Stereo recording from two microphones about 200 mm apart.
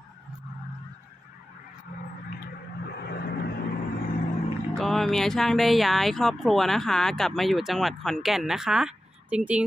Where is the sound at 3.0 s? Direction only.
55° left (ahead or behind).